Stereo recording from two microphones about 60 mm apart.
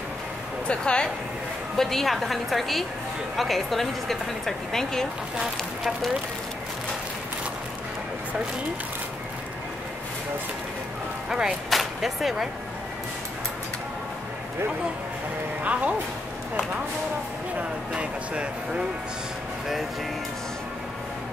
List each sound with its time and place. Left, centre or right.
0.7 s speech: centre
1.8 s speech: centre
11.2 s speech: centre
15.6 s speech: right
17.6 s speech: centre